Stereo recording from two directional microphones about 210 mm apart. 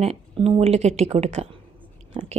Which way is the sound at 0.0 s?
30° right (ahead or behind).